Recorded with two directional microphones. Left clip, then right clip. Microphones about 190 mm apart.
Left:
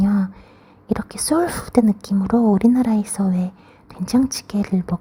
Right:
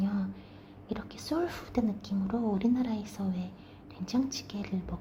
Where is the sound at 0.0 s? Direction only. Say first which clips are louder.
Left 13 dB; 45° left (ahead or behind).